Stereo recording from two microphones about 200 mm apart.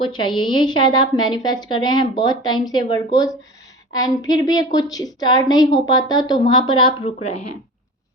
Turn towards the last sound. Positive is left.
turn(degrees=30)  # may be behind; listen again after turning